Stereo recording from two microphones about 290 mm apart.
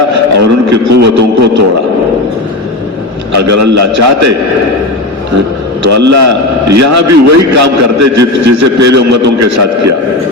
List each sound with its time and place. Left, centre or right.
0.1 s a man's voice: right
3.3 s a man's voice: right
5.8 s a man's voice: right